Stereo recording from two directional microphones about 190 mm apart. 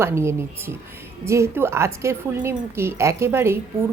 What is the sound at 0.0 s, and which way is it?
Speech, 15° right (ahead or behind).